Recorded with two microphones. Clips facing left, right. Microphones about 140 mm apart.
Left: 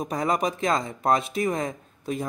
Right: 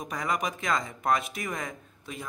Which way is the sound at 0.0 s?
35° left (ahead or behind).